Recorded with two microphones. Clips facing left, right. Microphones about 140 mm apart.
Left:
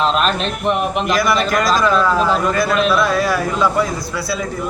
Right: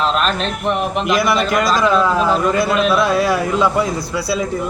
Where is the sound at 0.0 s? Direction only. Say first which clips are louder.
Left 1 dB; centre (ahead or behind).